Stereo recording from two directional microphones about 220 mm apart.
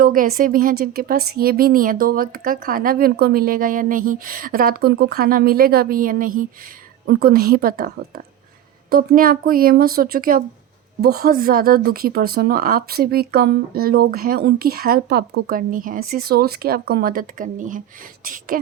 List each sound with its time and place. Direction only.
0.0 s speech: 40° right (ahead or behind)